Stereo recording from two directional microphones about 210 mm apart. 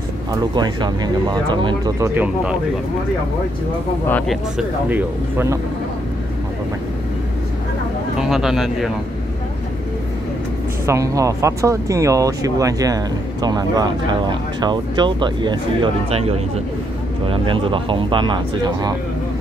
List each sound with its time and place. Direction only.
0.6 s speech: 20° right (ahead or behind)
4.1 s speech: centre (ahead or behind)
8.2 s speech: centre (ahead or behind)
10.9 s speech: 15° right (ahead or behind)